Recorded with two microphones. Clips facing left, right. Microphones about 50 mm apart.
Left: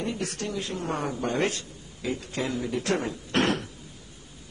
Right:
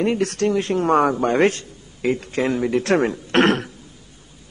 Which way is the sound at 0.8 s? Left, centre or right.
Right.